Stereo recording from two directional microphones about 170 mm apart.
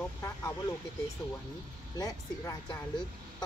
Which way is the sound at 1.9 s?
20° left (ahead or behind).